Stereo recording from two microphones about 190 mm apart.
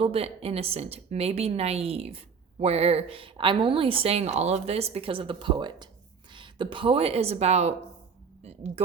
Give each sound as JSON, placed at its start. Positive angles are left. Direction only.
{"t": 0.0, "sound": "a woman's voice", "side_deg": -30}